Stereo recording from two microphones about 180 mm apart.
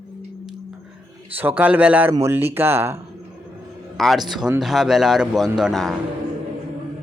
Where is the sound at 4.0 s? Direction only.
Centre (ahead or behind).